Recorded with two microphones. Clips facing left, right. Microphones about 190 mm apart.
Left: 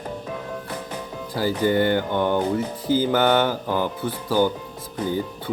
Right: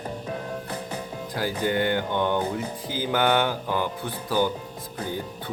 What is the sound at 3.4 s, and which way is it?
Speech, 10° left (ahead or behind).